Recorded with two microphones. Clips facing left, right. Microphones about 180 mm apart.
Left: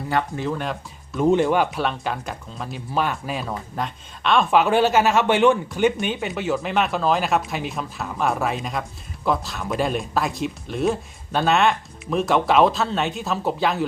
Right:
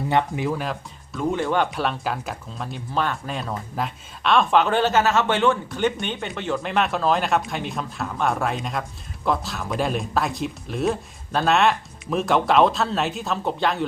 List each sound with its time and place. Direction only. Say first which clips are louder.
0.1 s speech: right 1 dB; 20° right (ahead or behind)
0.4 s speech: even; 5° right (ahead or behind)
1.1 s speech: left 6 dB; 20° left (ahead or behind)
1.5 s speech: left 1 dB; centre (ahead or behind)